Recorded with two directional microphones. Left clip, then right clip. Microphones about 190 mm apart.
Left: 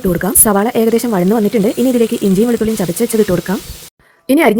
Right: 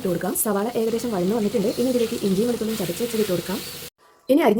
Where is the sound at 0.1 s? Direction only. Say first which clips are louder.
Left 11 dB; 55° left (ahead or behind).